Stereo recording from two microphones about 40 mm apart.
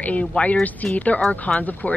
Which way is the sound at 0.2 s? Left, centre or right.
Left.